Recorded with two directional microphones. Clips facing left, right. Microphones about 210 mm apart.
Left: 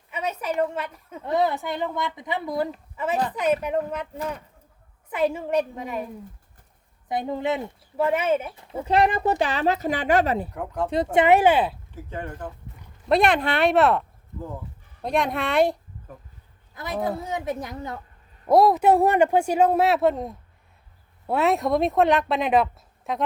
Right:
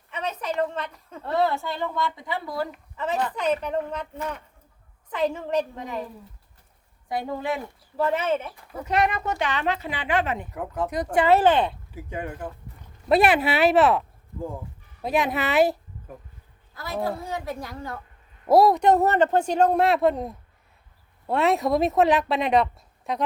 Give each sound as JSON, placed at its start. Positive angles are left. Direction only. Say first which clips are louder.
{"t": 0.1, "sound": "a woman's voice", "louder": "left 2 dB", "side_deg": 10}
{"t": 2.9, "sound": "a woman's voice", "louder": "right 1 dB", "side_deg": 10}
{"t": 5.1, "sound": "a woman's voice", "louder": "left 2 dB", "side_deg": 10}
{"t": 7.1, "sound": "a child's voice", "louder": "left 2 dB", "side_deg": 20}
{"t": 7.9, "sound": "a woman's voice", "louder": "left 2 dB", "side_deg": 10}
{"t": 8.5, "sound": "speech", "louder": "left 3 dB", "side_deg": 25}
{"t": 10.5, "sound": "a woman's voice", "louder": "left 1 dB", "side_deg": -5}
{"t": 10.8, "sound": "a woman's voice", "louder": "left 2 dB", "side_deg": 25}
{"t": 11.9, "sound": "a woman's voice", "louder": "right 3 dB", "side_deg": -10}
{"t": 15.0, "sound": "a woman's voice", "louder": "even", "side_deg": -5}
{"t": 16.7, "sound": "a child's voice", "louder": "left 1 dB", "side_deg": 20}
{"t": 18.4, "sound": "a woman's voice", "louder": "even", "side_deg": 0}